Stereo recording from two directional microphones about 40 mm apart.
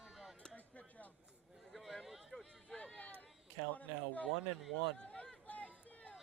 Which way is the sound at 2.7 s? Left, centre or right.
Left.